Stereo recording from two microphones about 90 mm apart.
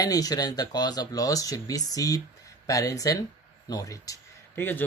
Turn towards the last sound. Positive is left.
turn(degrees=20)  # may be behind; listen again after turning